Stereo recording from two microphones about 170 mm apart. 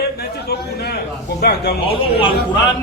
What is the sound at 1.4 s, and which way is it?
Speech, 70° left (ahead or behind).